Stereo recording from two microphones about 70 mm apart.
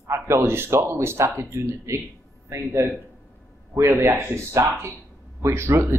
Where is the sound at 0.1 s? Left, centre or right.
Right.